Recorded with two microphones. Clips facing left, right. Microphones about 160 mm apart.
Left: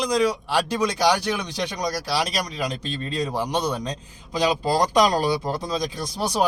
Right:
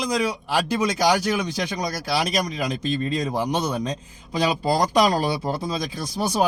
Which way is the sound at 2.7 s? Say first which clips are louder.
Right 4 dB; 35° left (ahead or behind).